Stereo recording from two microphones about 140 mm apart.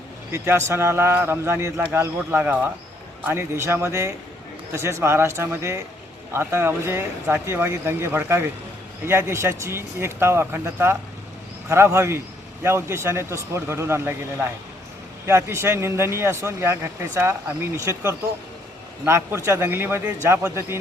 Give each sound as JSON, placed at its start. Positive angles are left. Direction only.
{"t": 0.3, "sound": "a man's voice", "side_deg": -15}